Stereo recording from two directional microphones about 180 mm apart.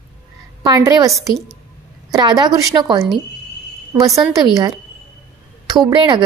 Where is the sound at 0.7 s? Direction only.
20° right (ahead or behind).